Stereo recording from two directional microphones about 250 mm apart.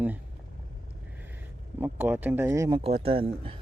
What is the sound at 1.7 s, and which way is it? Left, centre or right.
Speech, centre.